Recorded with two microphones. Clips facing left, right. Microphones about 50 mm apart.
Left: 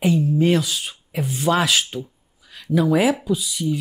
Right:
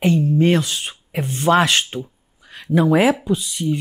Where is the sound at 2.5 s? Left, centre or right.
Centre.